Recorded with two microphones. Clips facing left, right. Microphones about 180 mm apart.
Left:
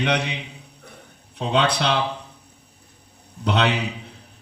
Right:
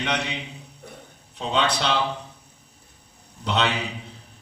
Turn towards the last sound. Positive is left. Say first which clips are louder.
# left 3 dB
turn(degrees=60)  # may be behind; listen again after turning